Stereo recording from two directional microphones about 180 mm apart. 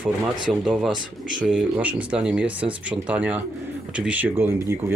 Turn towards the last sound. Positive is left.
turn(degrees=-15)  # may be behind; listen again after turning